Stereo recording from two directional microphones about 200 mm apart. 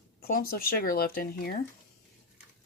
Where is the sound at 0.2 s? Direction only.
50° left (ahead or behind).